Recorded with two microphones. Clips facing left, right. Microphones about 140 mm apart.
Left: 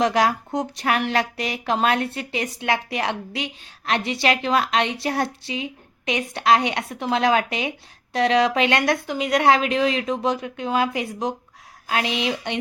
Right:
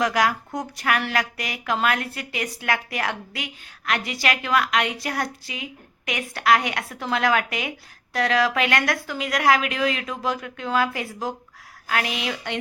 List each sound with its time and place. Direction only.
0.0 s a woman's voice: 25° left (ahead or behind)